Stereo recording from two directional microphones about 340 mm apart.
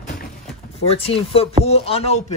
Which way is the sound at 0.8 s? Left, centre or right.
Centre.